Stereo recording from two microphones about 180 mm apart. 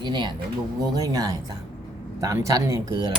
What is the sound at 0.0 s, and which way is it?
Speech, 25° right (ahead or behind).